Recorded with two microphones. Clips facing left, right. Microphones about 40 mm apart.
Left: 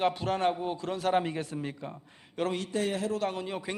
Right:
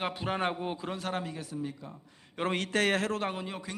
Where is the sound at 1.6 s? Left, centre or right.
Left.